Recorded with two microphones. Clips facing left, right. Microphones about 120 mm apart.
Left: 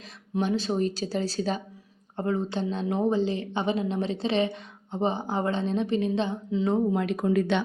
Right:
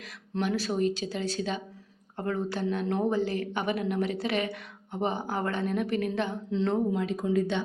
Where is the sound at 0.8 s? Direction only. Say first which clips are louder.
Left 1 dB; 35° left (ahead or behind).